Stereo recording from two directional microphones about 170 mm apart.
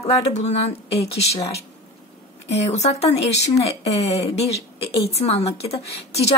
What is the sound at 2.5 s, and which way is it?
Speech, 40° left (ahead or behind).